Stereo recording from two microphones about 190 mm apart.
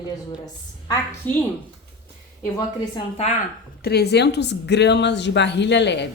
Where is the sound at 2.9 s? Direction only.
30° left (ahead or behind).